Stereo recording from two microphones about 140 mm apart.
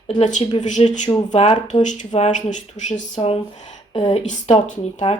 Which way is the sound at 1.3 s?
50° left (ahead or behind).